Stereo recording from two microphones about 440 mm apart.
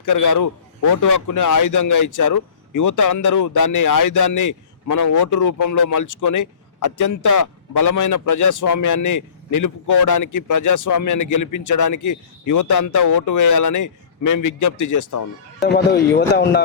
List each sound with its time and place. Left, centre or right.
0.0 s speech: left
15.7 s speech: left